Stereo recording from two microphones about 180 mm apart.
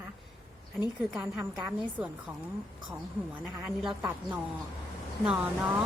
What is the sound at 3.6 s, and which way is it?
Speech, 5° right (ahead or behind).